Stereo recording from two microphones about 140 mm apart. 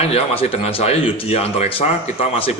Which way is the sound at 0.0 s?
45° left (ahead or behind).